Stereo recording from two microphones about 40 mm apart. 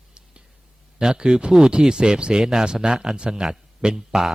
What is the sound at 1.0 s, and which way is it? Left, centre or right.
A man's voice, centre.